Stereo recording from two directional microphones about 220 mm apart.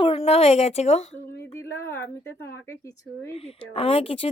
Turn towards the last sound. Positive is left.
turn(degrees=25)  # may be behind; listen again after turning